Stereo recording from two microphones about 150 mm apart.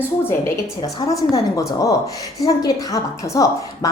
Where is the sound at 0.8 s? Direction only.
30° left (ahead or behind).